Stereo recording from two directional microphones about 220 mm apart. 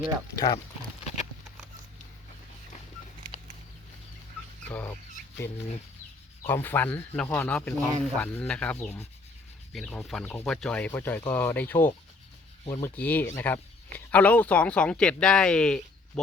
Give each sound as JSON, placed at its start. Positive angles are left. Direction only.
{"t": 0.3, "sound": "speech", "side_deg": 15}
{"t": 4.7, "sound": "speech", "side_deg": 10}
{"t": 6.5, "sound": "speech", "side_deg": 10}